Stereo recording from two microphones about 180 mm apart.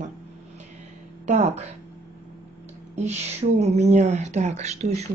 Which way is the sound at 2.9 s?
40° right (ahead or behind).